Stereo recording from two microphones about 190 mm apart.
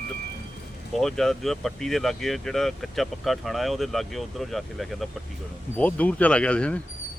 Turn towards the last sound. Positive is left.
turn(degrees=5)  # may be behind; listen again after turning